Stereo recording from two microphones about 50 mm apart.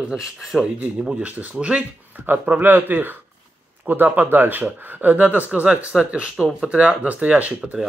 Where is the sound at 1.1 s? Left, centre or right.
Right.